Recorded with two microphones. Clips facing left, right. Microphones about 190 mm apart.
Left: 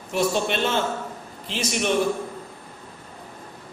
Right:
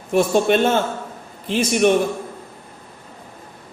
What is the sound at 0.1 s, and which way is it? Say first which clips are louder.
A man's voice: right 7 dB; 50° right (ahead or behind).